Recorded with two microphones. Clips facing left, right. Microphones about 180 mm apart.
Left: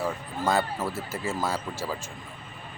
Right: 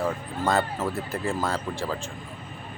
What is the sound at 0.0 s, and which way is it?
Speech, centre (ahead or behind).